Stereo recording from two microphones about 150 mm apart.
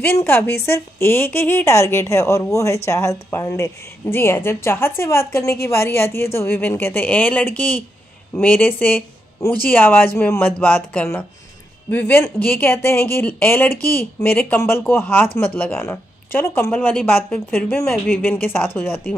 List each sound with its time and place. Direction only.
0.0 s a woman's voice: 15° left (ahead or behind)